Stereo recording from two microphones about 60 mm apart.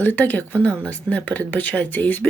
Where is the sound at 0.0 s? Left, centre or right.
Left.